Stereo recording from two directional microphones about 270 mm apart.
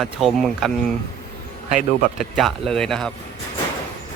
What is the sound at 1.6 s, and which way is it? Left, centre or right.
Speech, right.